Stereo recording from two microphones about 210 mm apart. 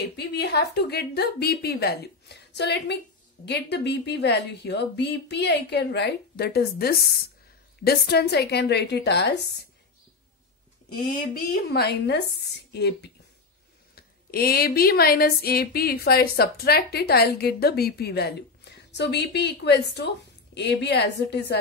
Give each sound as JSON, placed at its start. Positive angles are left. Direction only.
{"t": 0.0, "sound": "speech", "side_deg": 50}
{"t": 11.0, "sound": "speech", "side_deg": 45}